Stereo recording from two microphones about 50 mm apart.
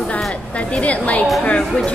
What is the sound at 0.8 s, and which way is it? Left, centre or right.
Speech, left.